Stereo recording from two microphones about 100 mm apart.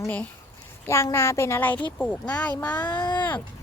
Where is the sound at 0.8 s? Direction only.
25° left (ahead or behind).